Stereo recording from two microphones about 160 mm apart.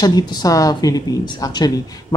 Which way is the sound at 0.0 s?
25° left (ahead or behind).